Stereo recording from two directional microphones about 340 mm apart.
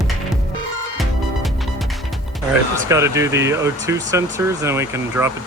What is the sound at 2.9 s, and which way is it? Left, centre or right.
Speech, centre.